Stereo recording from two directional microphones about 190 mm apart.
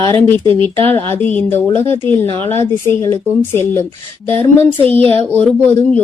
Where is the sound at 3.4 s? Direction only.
15° left (ahead or behind).